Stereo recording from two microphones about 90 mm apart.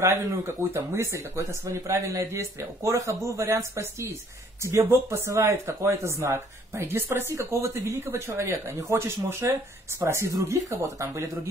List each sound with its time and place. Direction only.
0.0 s speech: 30° right (ahead or behind)